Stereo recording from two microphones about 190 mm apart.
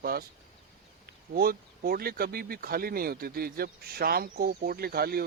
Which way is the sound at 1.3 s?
55° right (ahead or behind).